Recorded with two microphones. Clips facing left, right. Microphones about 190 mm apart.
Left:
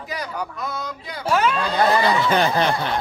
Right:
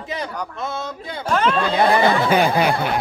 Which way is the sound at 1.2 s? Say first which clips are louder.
Even; 10° left (ahead or behind).